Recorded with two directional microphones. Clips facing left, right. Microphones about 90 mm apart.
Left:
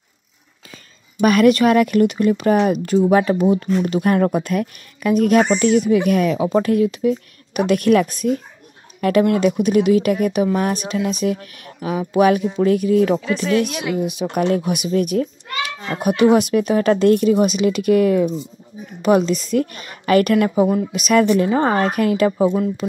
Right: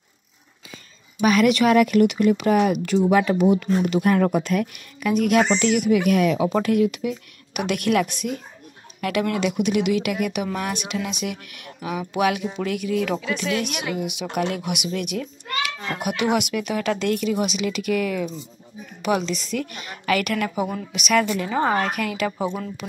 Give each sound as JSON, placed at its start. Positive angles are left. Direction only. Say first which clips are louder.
{"t": 1.2, "sound": "a child's voice", "louder": "left 4 dB", "side_deg": 45}
{"t": 5.4, "sound": "speech", "louder": "left 4 dB", "side_deg": 15}
{"t": 5.8, "sound": "a child's voice", "louder": "left 3 dB", "side_deg": 30}
{"t": 9.4, "sound": "a child's voice", "louder": "left 6 dB", "side_deg": 40}
{"t": 20.9, "sound": "a child's voice", "louder": "left 6 dB", "side_deg": 40}